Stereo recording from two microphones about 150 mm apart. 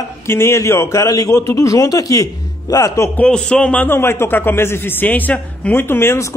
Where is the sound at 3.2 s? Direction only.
5° left (ahead or behind).